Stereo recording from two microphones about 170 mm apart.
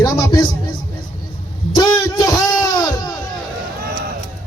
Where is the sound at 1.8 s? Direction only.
20° left (ahead or behind).